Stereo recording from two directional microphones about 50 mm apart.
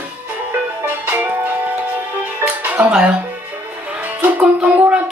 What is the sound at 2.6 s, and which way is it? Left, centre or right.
Music, right.